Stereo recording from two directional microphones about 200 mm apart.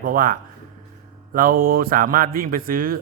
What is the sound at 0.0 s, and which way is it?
Speech, 45° right (ahead or behind).